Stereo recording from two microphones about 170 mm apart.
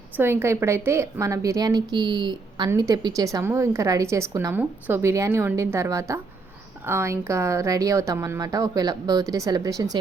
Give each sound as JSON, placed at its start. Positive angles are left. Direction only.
{"t": 0.2, "sound": "a woman's voice", "side_deg": -15}